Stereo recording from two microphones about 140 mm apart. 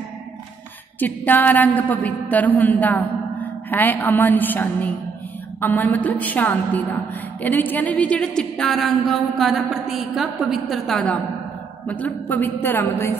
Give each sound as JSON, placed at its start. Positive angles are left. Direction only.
{"t": 0.9, "sound": "a woman's voice", "side_deg": 15}